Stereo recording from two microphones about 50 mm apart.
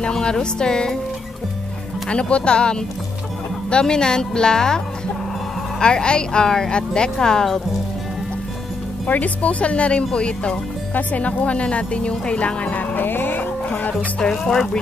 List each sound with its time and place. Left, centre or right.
0.0 s speech: centre
2.0 s speech: left
9.0 s speech: left
12.9 s music: left
14.2 s speech: centre